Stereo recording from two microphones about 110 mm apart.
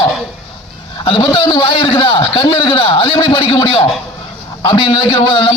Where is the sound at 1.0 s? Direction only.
50° left (ahead or behind).